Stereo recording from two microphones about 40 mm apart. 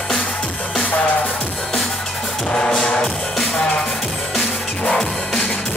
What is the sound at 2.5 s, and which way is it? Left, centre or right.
Music, centre.